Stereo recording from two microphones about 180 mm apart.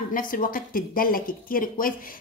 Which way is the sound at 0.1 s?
50° left (ahead or behind).